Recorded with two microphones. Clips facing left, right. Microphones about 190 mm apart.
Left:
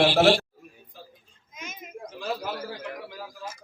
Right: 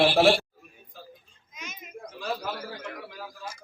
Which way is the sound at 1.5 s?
50° left (ahead or behind).